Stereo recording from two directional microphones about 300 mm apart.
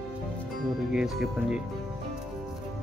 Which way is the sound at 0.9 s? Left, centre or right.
Centre.